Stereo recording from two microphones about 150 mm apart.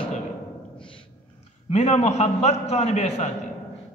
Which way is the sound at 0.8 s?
35° left (ahead or behind).